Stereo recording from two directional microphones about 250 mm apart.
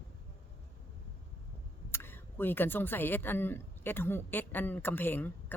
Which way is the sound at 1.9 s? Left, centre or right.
Centre.